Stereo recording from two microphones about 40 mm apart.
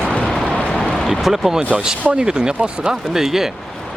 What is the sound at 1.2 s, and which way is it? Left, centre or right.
Speech, centre.